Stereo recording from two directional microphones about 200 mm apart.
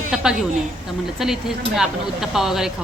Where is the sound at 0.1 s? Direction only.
5° right (ahead or behind).